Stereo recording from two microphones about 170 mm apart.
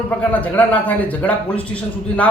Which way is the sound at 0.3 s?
10° left (ahead or behind).